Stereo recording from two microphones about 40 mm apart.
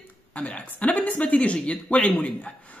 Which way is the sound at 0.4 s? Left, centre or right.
Left.